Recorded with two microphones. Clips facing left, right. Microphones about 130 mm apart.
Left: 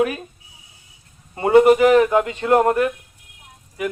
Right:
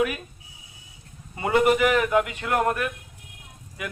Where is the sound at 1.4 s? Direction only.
30° left (ahead or behind).